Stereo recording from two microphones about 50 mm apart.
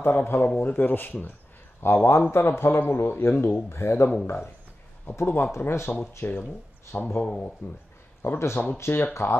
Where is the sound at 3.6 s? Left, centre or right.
Left.